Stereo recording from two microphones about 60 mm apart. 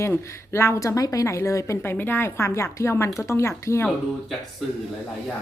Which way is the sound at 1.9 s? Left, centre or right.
Left.